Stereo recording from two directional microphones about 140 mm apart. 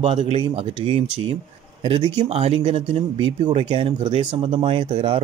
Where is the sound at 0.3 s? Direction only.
40° right (ahead or behind).